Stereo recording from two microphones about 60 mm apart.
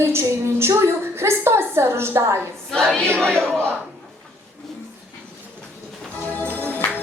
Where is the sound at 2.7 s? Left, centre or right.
Centre.